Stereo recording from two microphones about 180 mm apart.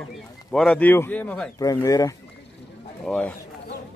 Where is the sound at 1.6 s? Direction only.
20° left (ahead or behind).